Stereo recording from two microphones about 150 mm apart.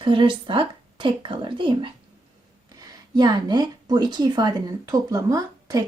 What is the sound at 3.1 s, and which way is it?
A woman's voice, 30° right (ahead or behind).